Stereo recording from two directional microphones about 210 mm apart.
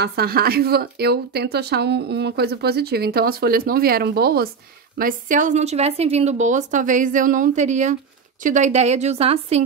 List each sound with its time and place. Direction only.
0.0 s a woman's voice: 50° right (ahead or behind); by 9.6 s 30° right (ahead or behind)